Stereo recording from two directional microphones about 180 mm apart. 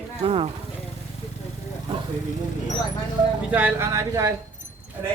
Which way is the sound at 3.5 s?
10° right (ahead or behind).